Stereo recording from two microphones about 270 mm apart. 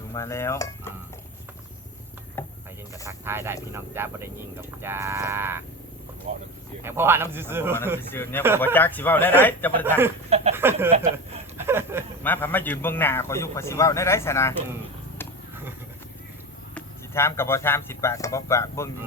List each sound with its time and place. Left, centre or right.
0.1 s a man's voice: centre
2.4 s a sound: centre
3.1 s speech: centre
6.8 s speech: centre
8.1 s a man's voice: centre
10.2 s speech: right
10.5 s speech: centre
12.2 s a man's voice: centre
16.7 s speech: centre